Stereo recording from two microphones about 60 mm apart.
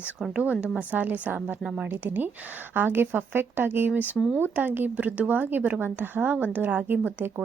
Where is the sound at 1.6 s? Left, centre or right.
Centre.